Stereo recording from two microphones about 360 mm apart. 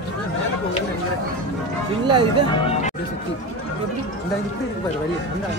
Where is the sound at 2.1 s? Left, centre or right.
Centre.